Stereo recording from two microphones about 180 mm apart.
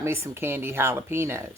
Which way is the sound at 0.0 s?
15° right (ahead or behind).